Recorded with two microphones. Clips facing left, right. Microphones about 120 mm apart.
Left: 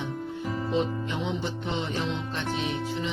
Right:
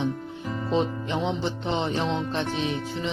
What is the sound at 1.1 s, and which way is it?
Speech, 30° right (ahead or behind).